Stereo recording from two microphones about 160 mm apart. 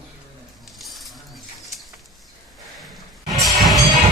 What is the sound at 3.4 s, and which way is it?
Music, centre (ahead or behind).